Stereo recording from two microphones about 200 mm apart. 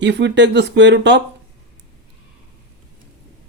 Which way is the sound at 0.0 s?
60° right (ahead or behind).